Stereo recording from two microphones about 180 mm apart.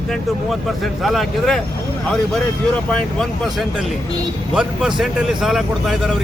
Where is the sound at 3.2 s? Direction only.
Centre (ahead or behind).